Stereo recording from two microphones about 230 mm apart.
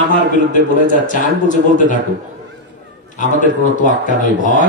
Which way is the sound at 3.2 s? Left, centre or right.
Left.